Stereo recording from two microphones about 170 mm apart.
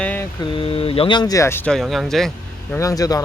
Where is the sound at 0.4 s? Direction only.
30° left (ahead or behind); by 2.3 s centre (ahead or behind).